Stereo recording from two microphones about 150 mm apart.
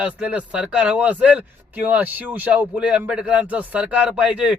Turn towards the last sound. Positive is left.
turn(degrees=-5)  # may be behind; listen again after turning